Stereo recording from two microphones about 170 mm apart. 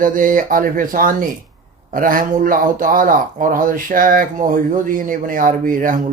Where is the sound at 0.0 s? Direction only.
55° right (ahead or behind).